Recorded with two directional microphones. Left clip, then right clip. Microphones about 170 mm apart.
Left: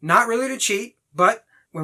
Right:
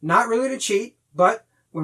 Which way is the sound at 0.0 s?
20° left (ahead or behind).